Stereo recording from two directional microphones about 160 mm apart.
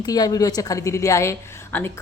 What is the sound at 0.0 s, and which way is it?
A woman's voice, 25° left (ahead or behind).